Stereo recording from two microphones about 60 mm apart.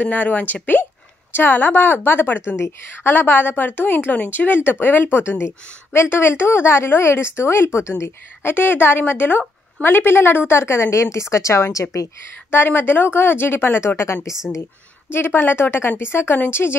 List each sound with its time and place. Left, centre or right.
0.0 s a woman's voice: left
2.5 s a woman's voice: left
3.1 s a woman's voice: left
12.4 s a woman's voice: left
15.1 s a woman's voice: left